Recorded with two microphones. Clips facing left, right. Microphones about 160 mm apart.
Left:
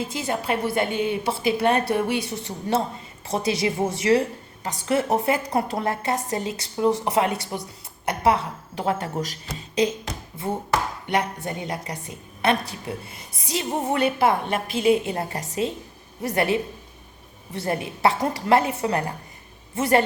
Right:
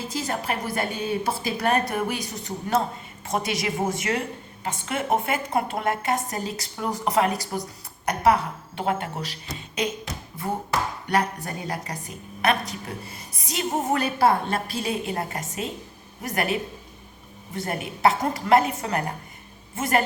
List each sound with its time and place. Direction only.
0.1 s a woman's voice: 25° left (ahead or behind)
11.0 s a woman's voice: 25° left (ahead or behind)